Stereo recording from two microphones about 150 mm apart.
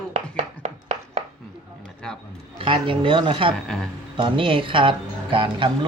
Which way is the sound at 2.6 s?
35° right (ahead or behind).